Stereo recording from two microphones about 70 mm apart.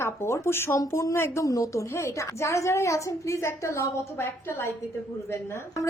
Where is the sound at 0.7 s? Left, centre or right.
Left.